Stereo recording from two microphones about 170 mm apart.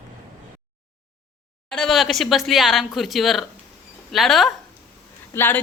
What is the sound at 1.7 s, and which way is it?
A woman's voice, centre (ahead or behind).